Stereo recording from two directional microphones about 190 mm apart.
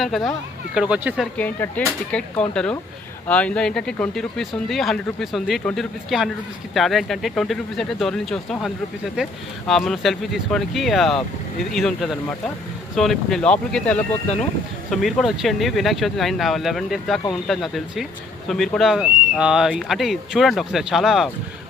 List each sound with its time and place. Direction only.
0.0 s speech: centre (ahead or behind)
1.4 s speech: 10° left (ahead or behind)